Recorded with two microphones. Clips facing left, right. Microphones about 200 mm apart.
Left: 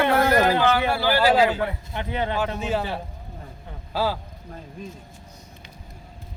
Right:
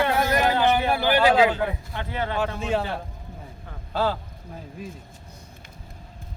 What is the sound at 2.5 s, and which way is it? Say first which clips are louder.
Speech: even; 5° left (ahead or behind).